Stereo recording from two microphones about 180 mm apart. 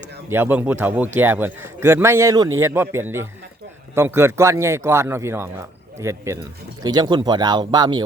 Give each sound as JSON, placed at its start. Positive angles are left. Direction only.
{"t": 0.3, "sound": "a man's voice", "side_deg": -10}